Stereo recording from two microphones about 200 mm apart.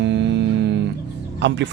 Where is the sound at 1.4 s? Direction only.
60° right (ahead or behind).